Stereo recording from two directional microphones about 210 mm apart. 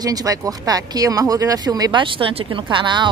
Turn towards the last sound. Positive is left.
turn(degrees=-20)  # may be behind; listen again after turning